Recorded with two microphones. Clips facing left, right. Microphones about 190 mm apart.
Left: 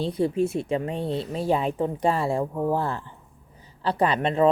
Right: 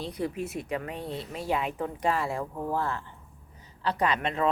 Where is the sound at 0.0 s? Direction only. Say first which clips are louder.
Left 9 dB; 30° left (ahead or behind).